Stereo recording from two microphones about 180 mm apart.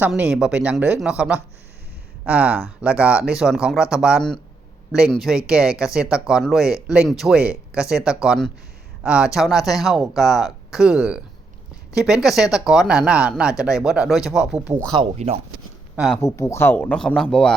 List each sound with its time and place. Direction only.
0.0 s speech: 5° right (ahead or behind)
14.9 s speech: 35° right (ahead or behind)
16.0 s speech: centre (ahead or behind)
16.2 s speech: 15° left (ahead or behind)